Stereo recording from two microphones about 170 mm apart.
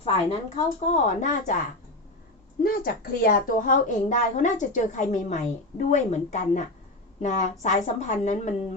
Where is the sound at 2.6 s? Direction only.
60° left (ahead or behind).